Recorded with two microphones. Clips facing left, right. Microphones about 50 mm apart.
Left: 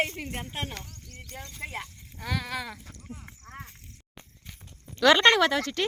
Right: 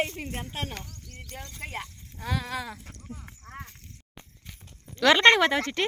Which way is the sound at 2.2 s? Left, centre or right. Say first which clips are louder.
Right 1 dB; centre.